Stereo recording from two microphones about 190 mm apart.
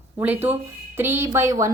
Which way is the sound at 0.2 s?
10° right (ahead or behind).